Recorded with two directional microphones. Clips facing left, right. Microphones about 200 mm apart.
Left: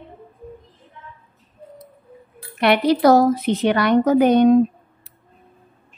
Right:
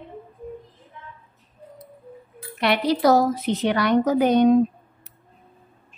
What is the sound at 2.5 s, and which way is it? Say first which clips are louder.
A woman's voice: left 5 dB; 60° left (ahead or behind).